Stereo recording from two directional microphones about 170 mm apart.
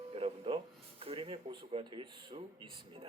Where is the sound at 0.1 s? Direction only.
35° right (ahead or behind).